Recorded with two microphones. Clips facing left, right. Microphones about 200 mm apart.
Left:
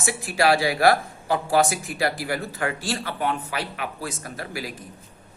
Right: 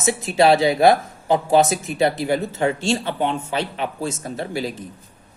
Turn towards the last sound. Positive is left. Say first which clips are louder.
# right 7 dB
turn(degrees=-25)  # may be behind; listen again after turning